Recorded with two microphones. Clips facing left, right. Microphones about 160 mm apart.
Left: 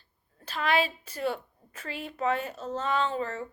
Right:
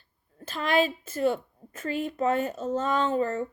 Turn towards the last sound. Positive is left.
turn(degrees=-45)  # may be behind; listen again after turning